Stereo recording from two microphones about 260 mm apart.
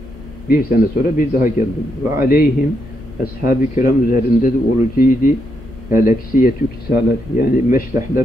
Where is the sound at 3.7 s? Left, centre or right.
Left.